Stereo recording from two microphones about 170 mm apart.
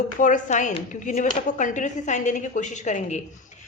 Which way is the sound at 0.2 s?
50° left (ahead or behind).